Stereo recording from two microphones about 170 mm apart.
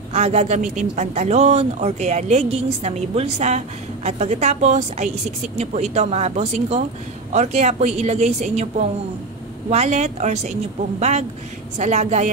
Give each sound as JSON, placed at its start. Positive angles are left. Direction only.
{"t": 0.1, "sound": "a woman's voice", "side_deg": -40}